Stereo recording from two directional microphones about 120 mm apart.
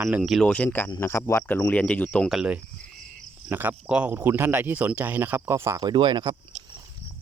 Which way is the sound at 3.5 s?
15° right (ahead or behind).